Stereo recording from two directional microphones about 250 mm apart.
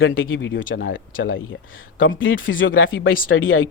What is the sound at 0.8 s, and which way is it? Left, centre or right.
Speech, left.